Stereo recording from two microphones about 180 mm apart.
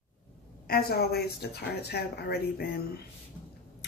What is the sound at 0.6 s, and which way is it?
Speech, 60° left (ahead or behind).